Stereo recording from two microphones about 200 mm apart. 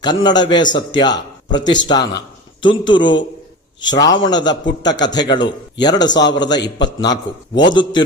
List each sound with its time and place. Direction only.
0.0 s a man's voice: 20° left (ahead or behind)